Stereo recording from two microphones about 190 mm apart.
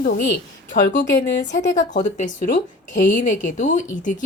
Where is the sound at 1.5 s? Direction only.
40° left (ahead or behind).